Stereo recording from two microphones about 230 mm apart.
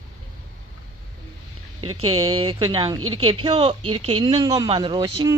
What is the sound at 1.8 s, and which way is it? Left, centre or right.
Speech, right.